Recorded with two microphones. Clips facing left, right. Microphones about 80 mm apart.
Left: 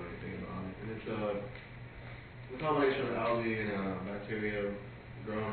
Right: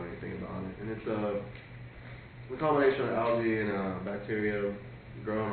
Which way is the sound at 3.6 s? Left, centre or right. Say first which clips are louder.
Right 4 dB; right.